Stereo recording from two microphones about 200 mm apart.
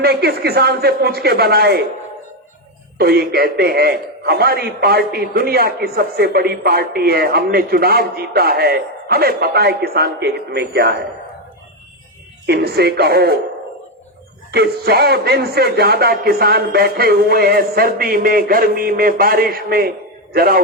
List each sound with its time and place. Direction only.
0.0 s a man's voice: 55° right (ahead or behind)
3.0 s a man's voice: 50° right (ahead or behind)
12.5 s a man's voice: 50° right (ahead or behind)
14.5 s a man's voice: 50° right (ahead or behind)